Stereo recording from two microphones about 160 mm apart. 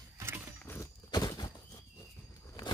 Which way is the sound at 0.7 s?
20° left (ahead or behind).